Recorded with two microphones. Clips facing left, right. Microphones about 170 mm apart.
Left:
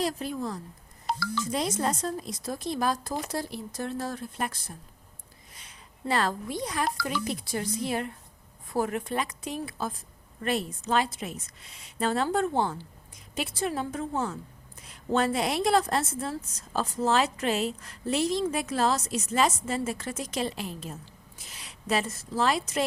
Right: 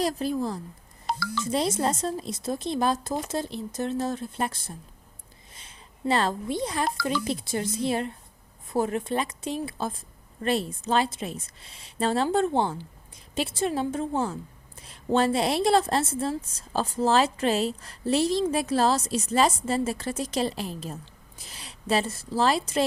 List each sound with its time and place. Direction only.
0.0 s a woman's voice: 35° right (ahead or behind)